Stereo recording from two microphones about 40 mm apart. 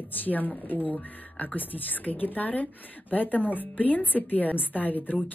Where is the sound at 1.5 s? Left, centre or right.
Left.